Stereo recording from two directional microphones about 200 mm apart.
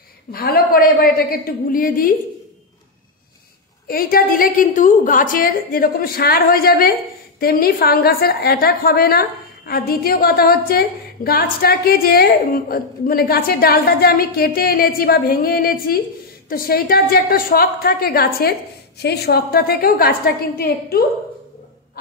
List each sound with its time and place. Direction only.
0.3 s a woman's voice: 45° left (ahead or behind)
3.8 s a woman's voice: 45° left (ahead or behind)